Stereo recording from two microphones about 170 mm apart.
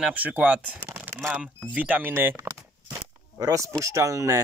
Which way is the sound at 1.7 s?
10° right (ahead or behind).